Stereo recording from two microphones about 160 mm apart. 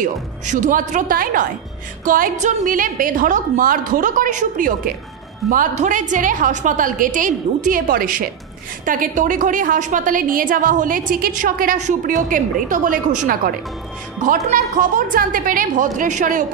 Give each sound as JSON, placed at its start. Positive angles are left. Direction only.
{"t": 0.0, "sound": "a woman's voice", "side_deg": -55}